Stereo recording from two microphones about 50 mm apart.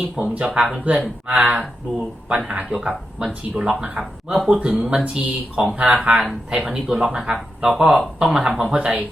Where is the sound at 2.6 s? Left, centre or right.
Centre.